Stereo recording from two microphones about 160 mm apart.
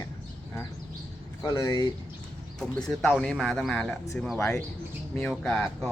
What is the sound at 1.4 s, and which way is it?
Speech, 20° left (ahead or behind).